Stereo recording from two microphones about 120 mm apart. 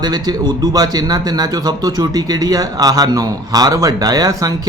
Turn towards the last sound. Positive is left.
turn(degrees=-30)  # may be behind; listen again after turning